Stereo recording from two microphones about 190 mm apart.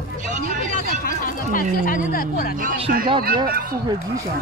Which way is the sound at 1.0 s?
45° left (ahead or behind).